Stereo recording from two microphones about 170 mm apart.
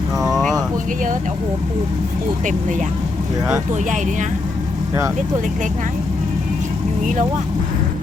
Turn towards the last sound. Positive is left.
turn(degrees=-50)  # may be behind; listen again after turning